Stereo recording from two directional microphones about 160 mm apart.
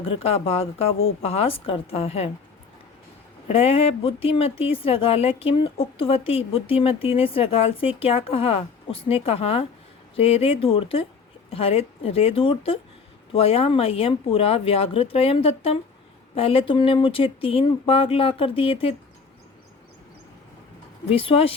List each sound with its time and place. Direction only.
0.0 s speech: 35° left (ahead or behind)
3.4 s speech: 40° left (ahead or behind)
21.1 s speech: 35° left (ahead or behind)